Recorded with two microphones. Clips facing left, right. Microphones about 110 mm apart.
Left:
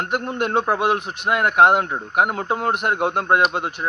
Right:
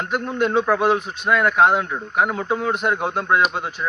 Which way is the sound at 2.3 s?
45° left (ahead or behind).